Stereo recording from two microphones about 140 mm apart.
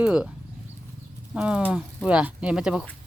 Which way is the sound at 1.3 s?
10° right (ahead or behind).